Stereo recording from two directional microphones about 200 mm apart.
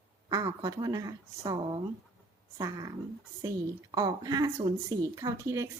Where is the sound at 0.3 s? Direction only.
15° right (ahead or behind).